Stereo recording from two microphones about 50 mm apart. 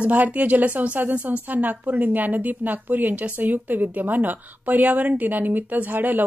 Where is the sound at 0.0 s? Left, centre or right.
Right.